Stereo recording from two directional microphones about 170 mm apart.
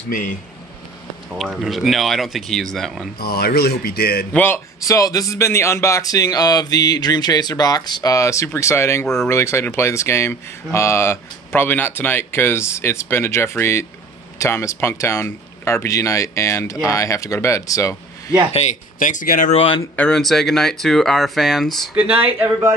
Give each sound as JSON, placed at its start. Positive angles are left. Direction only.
{"t": 1.3, "sound": "speech", "side_deg": -5}
{"t": 3.2, "sound": "speech", "side_deg": 65}
{"t": 4.3, "sound": "speech", "side_deg": 10}
{"t": 18.5, "sound": "speech", "side_deg": 40}
{"t": 19.5, "sound": "speech", "side_deg": 35}
{"t": 20.0, "sound": "speech", "side_deg": 5}
{"t": 22.0, "sound": "speech", "side_deg": -35}
{"t": 22.4, "sound": "speech", "side_deg": -15}